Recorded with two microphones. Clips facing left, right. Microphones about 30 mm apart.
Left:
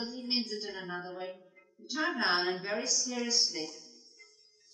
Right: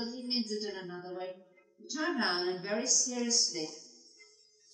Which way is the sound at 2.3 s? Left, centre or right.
Left.